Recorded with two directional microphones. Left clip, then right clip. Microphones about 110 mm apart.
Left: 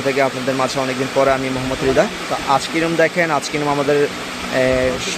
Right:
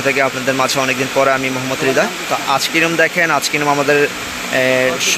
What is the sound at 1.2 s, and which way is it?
Speech, 15° left (ahead or behind).